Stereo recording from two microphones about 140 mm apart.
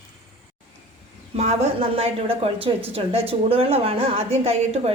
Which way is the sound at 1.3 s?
50° right (ahead or behind).